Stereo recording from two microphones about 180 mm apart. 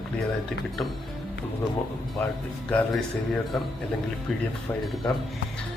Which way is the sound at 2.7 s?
Centre (ahead or behind).